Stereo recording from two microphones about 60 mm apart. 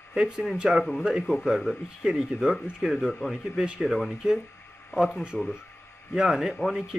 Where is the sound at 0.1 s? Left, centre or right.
Centre.